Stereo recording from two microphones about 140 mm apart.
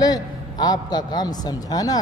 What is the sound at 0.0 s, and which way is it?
A woman's voice, 25° left (ahead or behind).